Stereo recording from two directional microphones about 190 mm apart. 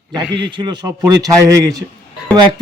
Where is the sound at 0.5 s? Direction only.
25° right (ahead or behind).